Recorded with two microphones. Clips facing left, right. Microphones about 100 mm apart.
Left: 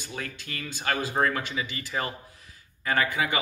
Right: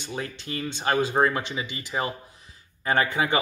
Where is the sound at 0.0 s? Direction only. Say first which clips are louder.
Right 4 dB; 25° right (ahead or behind).